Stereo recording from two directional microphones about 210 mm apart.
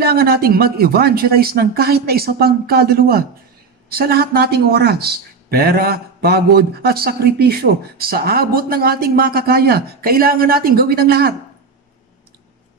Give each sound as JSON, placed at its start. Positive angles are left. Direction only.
{"t": 0.0, "sound": "speech", "side_deg": -45}